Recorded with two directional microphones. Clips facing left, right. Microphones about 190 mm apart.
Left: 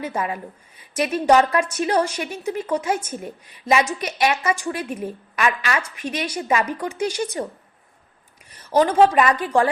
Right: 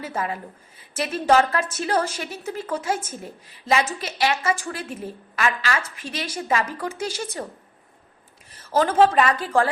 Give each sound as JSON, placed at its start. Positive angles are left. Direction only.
{"t": 0.0, "sound": "a woman's voice", "side_deg": 15}
{"t": 8.7, "sound": "a woman's voice", "side_deg": 15}